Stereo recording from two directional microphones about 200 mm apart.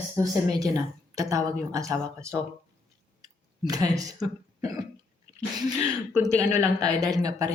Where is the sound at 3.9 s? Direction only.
15° right (ahead or behind).